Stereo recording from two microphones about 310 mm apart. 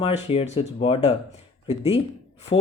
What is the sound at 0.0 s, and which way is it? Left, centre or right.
Speech, centre.